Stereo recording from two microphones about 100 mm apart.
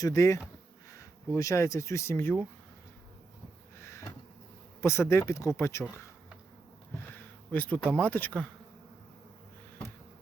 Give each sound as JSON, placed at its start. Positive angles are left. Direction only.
{"t": 0.0, "sound": "speech", "side_deg": 35}
{"t": 3.8, "sound": "a sound", "side_deg": 30}
{"t": 4.8, "sound": "speech", "side_deg": 25}
{"t": 7.5, "sound": "speech", "side_deg": 15}